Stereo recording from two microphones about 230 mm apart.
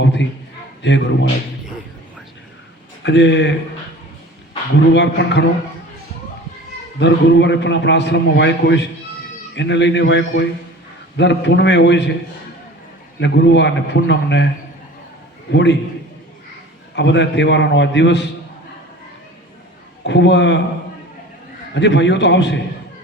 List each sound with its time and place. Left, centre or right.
0.0 s a man's voice: left
3.0 s a man's voice: left
4.9 s a man's voice: left
7.0 s a man's voice: left
13.1 s a man's voice: left
16.9 s a man's voice: left
20.1 s a man's voice: left
21.8 s a man's voice: left